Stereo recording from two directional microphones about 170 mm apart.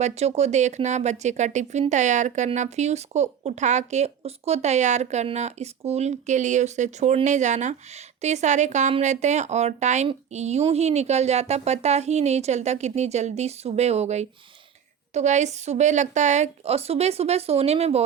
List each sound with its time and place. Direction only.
0.0 s speech: 40° right (ahead or behind)